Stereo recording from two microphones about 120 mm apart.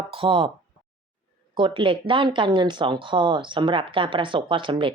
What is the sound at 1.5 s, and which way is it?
Speech, 45° right (ahead or behind).